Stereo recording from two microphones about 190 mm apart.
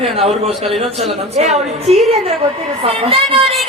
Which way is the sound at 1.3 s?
35° right (ahead or behind).